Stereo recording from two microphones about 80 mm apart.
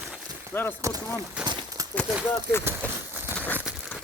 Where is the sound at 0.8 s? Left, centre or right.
Right.